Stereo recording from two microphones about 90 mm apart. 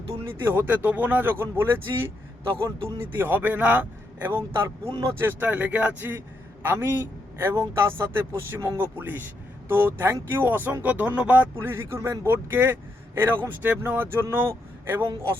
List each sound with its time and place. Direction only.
0.3 s a man's voice: 25° right (ahead or behind)